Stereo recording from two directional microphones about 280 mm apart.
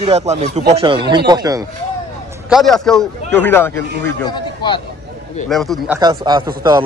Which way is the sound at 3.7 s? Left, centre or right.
Right.